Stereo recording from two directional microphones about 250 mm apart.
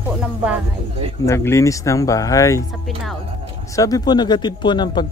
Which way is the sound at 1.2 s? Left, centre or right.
Centre.